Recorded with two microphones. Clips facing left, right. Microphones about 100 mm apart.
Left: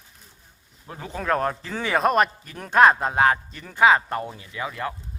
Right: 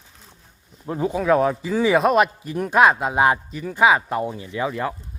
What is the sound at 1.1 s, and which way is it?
Speech, 5° right (ahead or behind).